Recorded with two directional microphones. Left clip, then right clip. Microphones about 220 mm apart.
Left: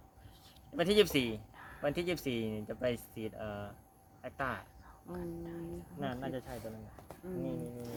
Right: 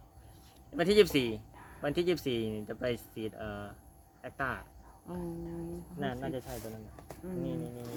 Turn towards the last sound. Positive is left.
turn(degrees=0)  # may be behind; listen again after turning